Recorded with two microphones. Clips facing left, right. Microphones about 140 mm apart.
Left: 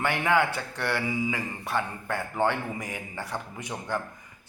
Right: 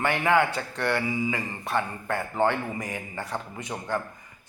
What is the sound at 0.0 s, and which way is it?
Speech, centre (ahead or behind).